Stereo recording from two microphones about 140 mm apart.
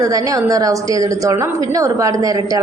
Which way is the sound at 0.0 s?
25° right (ahead or behind).